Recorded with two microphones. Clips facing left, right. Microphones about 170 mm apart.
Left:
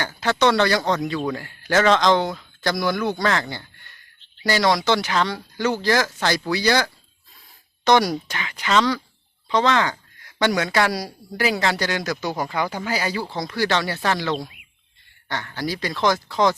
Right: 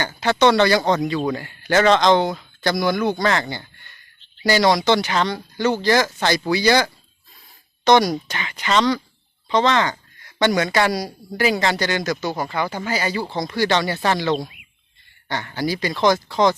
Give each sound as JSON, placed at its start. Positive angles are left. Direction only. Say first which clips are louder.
{"t": 0.0, "sound": "speech", "louder": "right 3 dB", "side_deg": 0}